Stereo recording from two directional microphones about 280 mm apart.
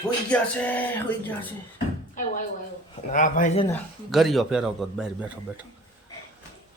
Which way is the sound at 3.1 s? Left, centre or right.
Left.